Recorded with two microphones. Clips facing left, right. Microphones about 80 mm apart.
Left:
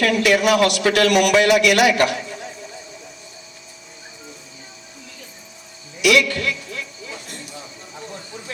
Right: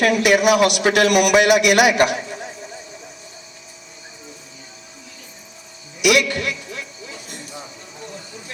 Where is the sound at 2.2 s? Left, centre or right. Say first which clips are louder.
Right 1 dB; right.